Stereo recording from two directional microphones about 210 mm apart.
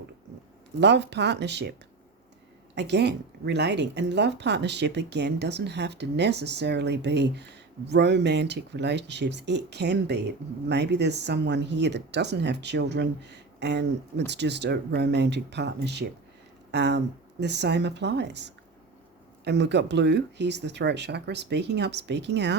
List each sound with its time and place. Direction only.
0.8 s speech: 55° right (ahead or behind)
2.7 s speech: 55° right (ahead or behind)